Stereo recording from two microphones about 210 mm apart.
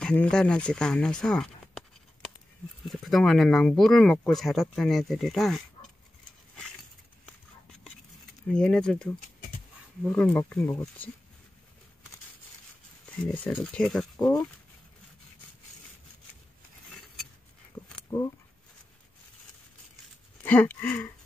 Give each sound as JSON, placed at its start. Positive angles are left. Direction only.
{"t": 0.0, "sound": "speech", "side_deg": 5}
{"t": 8.5, "sound": "speech", "side_deg": 5}
{"t": 13.1, "sound": "speech", "side_deg": 5}
{"t": 14.1, "sound": "speech", "side_deg": 15}
{"t": 17.8, "sound": "a sound", "side_deg": 15}
{"t": 20.4, "sound": "speech", "side_deg": 5}